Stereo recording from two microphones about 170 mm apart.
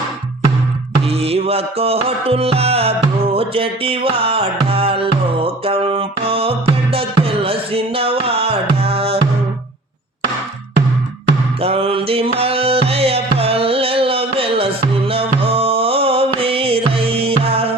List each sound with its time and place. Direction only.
1.0 s music: 35° right (ahead or behind)
11.6 s music: 35° right (ahead or behind)